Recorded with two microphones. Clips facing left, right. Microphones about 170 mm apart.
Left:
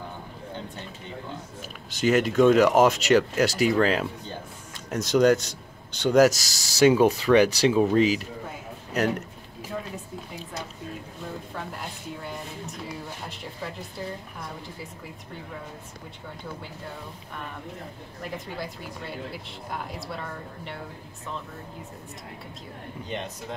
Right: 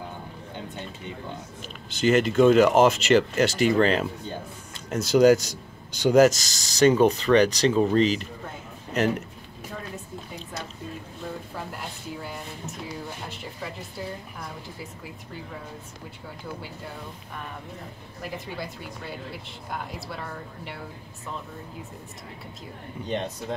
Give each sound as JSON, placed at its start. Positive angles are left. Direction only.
{"t": 2.0, "sound": "speech", "side_deg": 0}
{"t": 6.2, "sound": "speech", "side_deg": 5}
{"t": 11.5, "sound": "speech", "side_deg": 0}
{"t": 18.2, "sound": "speech", "side_deg": 0}